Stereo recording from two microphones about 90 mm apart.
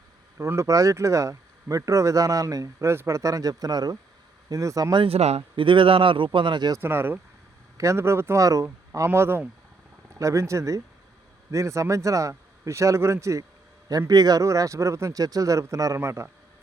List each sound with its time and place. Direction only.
0.3 s speech: 30° right (ahead or behind)
4.9 s speech: 75° right (ahead or behind); by 6.7 s 55° right (ahead or behind)
6.7 s speech: 25° right (ahead or behind)
14.1 s speech: 45° right (ahead or behind); by 16.3 s 30° right (ahead or behind)